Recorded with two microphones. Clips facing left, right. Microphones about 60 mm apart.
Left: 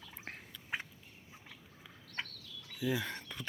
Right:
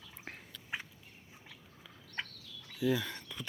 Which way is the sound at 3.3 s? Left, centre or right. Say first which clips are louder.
Right 1 dB; left.